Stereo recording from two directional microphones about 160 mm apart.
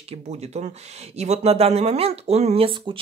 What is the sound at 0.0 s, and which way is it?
Speech, 40° right (ahead or behind).